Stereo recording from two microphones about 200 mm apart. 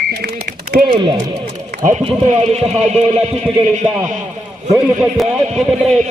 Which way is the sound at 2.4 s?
30° right (ahead or behind).